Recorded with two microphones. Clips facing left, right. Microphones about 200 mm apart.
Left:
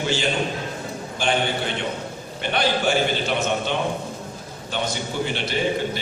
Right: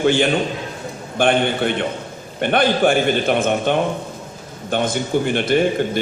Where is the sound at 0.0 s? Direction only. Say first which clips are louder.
Right 7 dB; 55° right (ahead or behind).